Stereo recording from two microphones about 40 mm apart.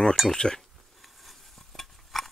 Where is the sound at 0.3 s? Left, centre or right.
Centre.